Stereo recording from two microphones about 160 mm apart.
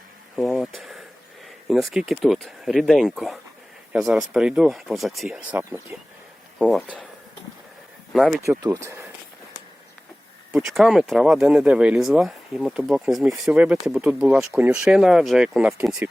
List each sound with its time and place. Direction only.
0.3 s a sound: centre (ahead or behind)
1.7 s speech: 5° right (ahead or behind)
8.1 s speech: centre (ahead or behind)
8.4 s speech: 20° right (ahead or behind)
10.5 s speech: centre (ahead or behind)